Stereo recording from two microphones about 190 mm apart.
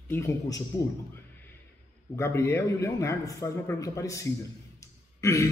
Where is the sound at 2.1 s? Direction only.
15° left (ahead or behind).